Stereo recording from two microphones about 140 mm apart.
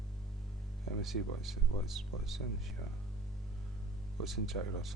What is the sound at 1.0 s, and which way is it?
Speech, centre (ahead or behind).